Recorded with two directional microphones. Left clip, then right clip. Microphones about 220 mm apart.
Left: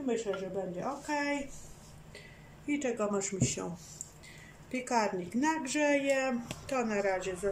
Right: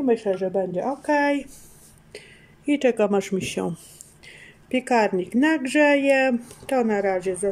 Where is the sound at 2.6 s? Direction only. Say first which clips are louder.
Right 12 dB; 45° right (ahead or behind).